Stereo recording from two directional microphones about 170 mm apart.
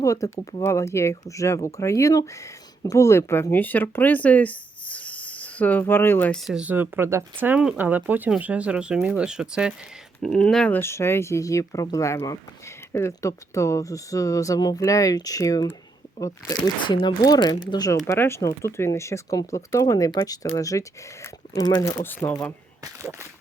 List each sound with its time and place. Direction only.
0.0 s speech: 20° left (ahead or behind)